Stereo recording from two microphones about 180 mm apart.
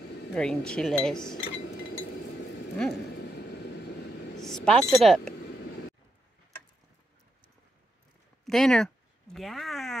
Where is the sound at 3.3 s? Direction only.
65° left (ahead or behind).